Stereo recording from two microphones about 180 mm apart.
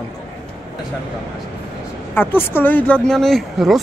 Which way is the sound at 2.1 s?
10° left (ahead or behind).